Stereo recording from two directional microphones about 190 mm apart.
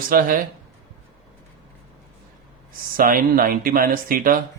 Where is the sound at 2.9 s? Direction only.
50° right (ahead or behind).